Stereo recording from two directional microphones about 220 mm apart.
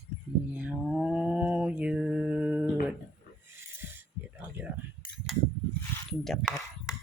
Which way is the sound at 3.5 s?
10° right (ahead or behind).